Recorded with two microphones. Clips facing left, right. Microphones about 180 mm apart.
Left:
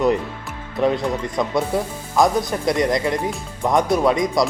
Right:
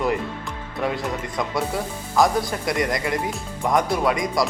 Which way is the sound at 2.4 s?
20° left (ahead or behind).